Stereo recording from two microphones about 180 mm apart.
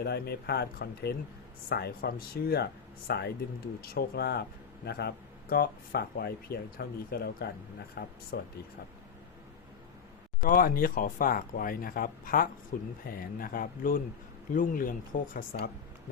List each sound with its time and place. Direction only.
0.0 s speech: 65° left (ahead or behind)
10.4 s speech: 50° left (ahead or behind)